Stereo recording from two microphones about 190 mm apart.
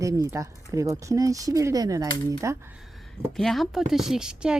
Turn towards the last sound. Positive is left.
turn(degrees=-5)  # may be behind; listen again after turning